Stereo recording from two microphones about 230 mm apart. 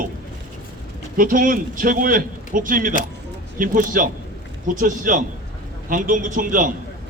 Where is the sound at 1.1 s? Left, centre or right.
Right.